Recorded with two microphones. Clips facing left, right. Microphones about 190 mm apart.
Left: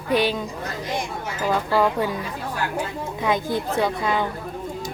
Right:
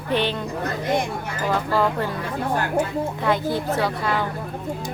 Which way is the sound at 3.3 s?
15° left (ahead or behind).